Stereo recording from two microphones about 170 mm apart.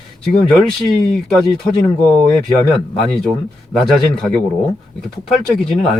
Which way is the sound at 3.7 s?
Centre (ahead or behind).